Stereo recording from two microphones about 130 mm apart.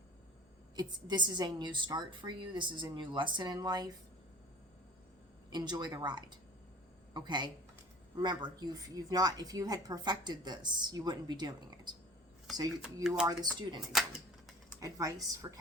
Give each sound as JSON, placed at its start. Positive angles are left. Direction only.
{"t": 0.8, "sound": "a woman's voice", "side_deg": -35}
{"t": 5.5, "sound": "a woman's voice", "side_deg": -35}
{"t": 12.8, "sound": "speech", "side_deg": -5}
{"t": 13.6, "sound": "a woman's voice", "side_deg": -35}
{"t": 13.9, "sound": "a sound", "side_deg": 0}
{"t": 14.8, "sound": "speech", "side_deg": -25}